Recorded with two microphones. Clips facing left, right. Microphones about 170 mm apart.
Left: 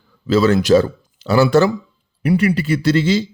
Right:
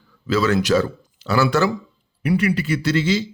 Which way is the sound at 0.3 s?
30° left (ahead or behind).